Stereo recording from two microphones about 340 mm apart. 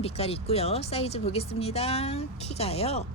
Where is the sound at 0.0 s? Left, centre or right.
Centre.